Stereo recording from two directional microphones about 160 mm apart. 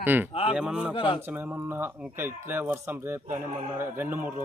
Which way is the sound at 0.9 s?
30° left (ahead or behind).